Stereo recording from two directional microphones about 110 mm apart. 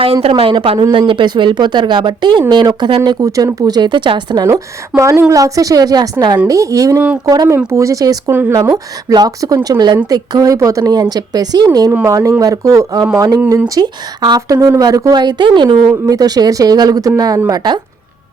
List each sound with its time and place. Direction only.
0.0 s a woman's voice: 60° right (ahead or behind); by 3.2 s 40° right (ahead or behind)
3.2 s speech: 30° right (ahead or behind); by 4.4 s 45° right (ahead or behind)
4.4 s speech: 30° right (ahead or behind)
6.5 s speech: 30° right (ahead or behind)
8.3 s speech: 20° right (ahead or behind)
8.7 s speech: 35° right (ahead or behind)